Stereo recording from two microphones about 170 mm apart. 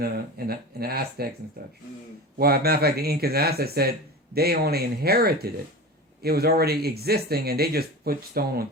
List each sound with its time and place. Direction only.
0.0 s speech: 65° right (ahead or behind)